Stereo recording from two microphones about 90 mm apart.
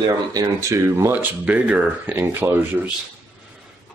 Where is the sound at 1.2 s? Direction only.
15° right (ahead or behind).